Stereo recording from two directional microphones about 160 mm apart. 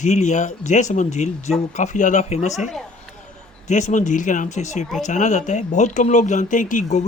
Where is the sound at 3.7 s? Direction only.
50° left (ahead or behind).